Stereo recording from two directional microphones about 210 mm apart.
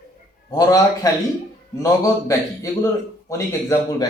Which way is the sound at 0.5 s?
15° left (ahead or behind).